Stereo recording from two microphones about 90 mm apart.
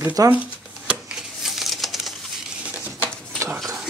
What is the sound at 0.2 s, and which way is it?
Speech, 40° right (ahead or behind).